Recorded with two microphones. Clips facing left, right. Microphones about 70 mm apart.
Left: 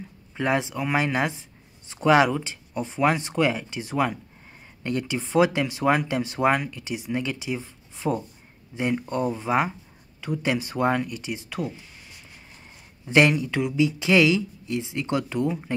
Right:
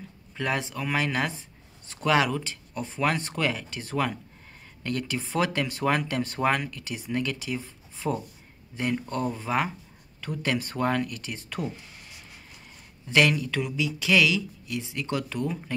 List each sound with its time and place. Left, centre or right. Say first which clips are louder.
0.4 s speech: left 5 dB; centre
7.6 s a sound: left 3 dB; centre
8.9 s speech: left 3 dB; centre
13.0 s speech: left 3 dB; left